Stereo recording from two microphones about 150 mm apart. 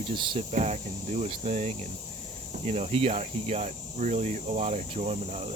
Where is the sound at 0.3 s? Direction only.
45° right (ahead or behind).